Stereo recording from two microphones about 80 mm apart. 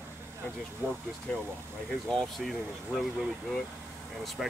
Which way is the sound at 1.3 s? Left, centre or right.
Centre.